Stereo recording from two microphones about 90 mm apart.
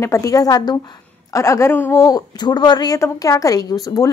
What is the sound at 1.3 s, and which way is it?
Speech, 35° left (ahead or behind).